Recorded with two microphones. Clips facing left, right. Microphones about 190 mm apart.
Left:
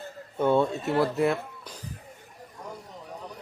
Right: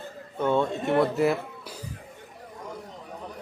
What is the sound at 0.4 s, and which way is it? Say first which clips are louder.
Speech: left 1 dB; 10° left (ahead or behind).